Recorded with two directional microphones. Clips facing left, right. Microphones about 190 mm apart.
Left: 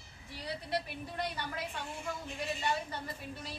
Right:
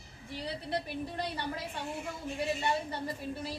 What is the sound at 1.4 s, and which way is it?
A man's voice, 30° right (ahead or behind).